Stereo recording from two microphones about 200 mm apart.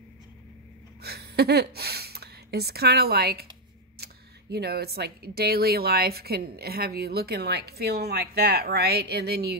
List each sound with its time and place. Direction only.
1.0 s speech: 55° right (ahead or behind)